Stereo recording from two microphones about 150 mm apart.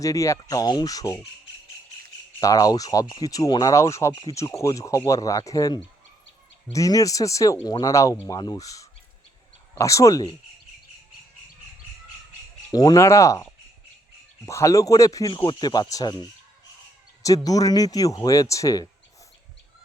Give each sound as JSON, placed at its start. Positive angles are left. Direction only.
{"t": 0.0, "sound": "speech", "side_deg": 20}
{"t": 2.4, "sound": "speech", "side_deg": 25}
{"t": 12.7, "sound": "speech", "side_deg": 25}
{"t": 17.2, "sound": "speech", "side_deg": 25}